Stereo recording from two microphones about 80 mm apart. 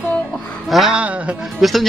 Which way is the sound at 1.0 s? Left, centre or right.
Centre.